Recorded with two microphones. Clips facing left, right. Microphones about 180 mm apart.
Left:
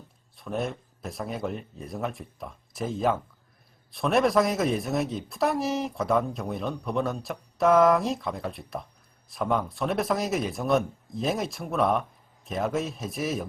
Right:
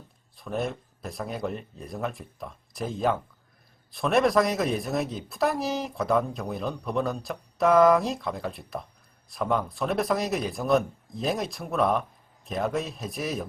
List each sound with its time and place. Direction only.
0.3 s a woman's voice: centre (ahead or behind)